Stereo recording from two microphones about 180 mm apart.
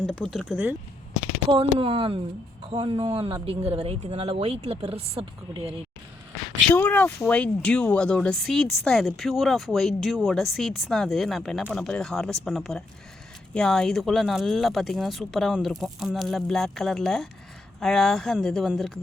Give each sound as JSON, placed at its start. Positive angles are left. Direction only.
{"t": 0.0, "sound": "speech", "side_deg": 0}
{"t": 1.8, "sound": "speech", "side_deg": -30}
{"t": 6.7, "sound": "speech", "side_deg": 10}